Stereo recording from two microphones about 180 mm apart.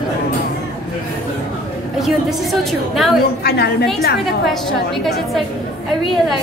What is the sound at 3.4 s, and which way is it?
Speech, 60° left (ahead or behind).